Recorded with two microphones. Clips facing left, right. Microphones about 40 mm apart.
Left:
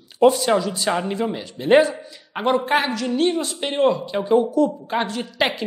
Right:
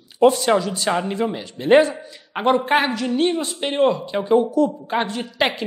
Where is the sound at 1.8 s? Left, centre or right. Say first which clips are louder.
Right 1 dB; right.